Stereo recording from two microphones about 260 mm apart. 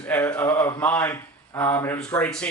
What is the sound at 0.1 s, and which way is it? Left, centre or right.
Speech, centre.